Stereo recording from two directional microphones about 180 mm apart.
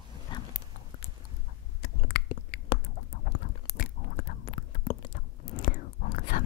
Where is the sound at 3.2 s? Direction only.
55° left (ahead or behind).